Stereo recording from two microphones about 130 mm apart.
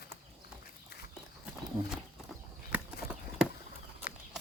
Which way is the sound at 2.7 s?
10° right (ahead or behind).